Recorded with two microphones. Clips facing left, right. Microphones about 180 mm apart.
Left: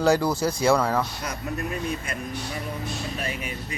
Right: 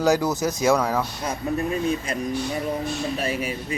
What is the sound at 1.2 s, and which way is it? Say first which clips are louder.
Speech: right 5 dB; 30° right (ahead or behind).